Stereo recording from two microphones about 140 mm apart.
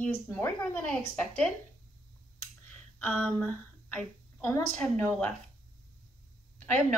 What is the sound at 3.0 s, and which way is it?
A woman's voice, 10° left (ahead or behind).